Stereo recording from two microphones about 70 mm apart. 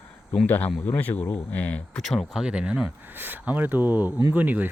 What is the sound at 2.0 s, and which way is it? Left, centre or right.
Speech, centre.